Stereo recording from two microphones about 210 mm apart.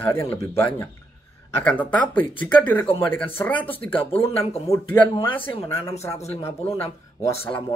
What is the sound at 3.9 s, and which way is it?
Speech, 25° left (ahead or behind).